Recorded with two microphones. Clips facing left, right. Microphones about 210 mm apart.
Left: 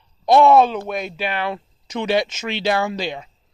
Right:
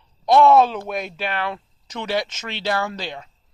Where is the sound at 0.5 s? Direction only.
Centre (ahead or behind); by 3.3 s 15° left (ahead or behind).